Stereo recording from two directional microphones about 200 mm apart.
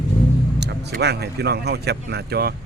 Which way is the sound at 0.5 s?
60° right (ahead or behind).